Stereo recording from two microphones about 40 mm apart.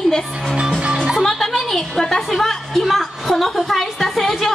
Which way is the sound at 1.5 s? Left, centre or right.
Centre.